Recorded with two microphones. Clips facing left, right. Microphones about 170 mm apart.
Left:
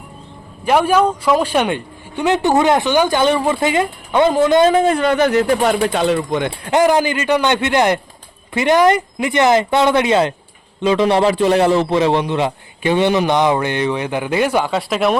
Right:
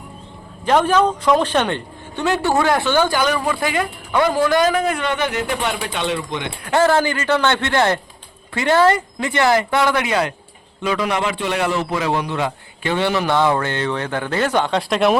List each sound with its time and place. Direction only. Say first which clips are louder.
0.6 s speech: left 2 dB; 10° left (ahead or behind)
3.2 s a man's voice: left 4 dB; 25° left (ahead or behind); by 6.5 s 45° left (ahead or behind)
6.7 s a man's voice: left 2 dB; 15° left (ahead or behind)